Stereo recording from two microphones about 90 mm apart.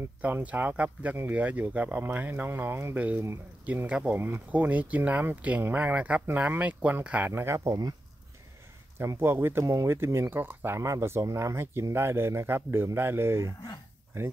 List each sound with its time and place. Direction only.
0.2 s speech: 15° right (ahead or behind); by 7.9 s 40° right (ahead or behind)
8.9 s speech: 25° right (ahead or behind)
9.7 s speech: 40° right (ahead or behind)